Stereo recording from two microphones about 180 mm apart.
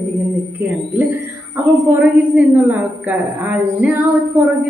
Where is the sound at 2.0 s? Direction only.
10° right (ahead or behind).